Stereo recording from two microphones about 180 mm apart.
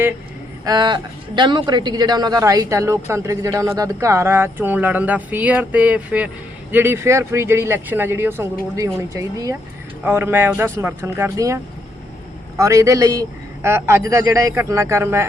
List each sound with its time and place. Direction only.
0.6 s a man's voice: 20° right (ahead or behind)